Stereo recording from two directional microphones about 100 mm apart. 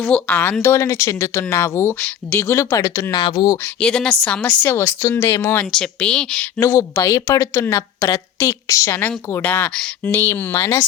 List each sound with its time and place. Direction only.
0.0 s a woman's voice: 15° left (ahead or behind)
0.6 s speech: 30° left (ahead or behind)
3.2 s speech: 45° left (ahead or behind)
3.8 s a woman's voice: 10° left (ahead or behind)
4.7 s speech: 25° left (ahead or behind)
5.7 s a woman's voice: 10° left (ahead or behind)
6.6 s a woman's voice: 30° left (ahead or behind)
9.0 s speech: 15° left (ahead or behind)